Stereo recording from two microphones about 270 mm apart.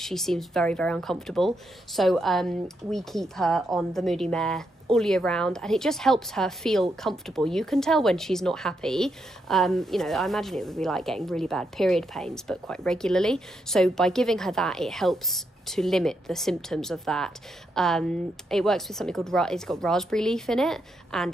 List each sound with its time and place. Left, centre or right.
0.0 s a woman's voice: centre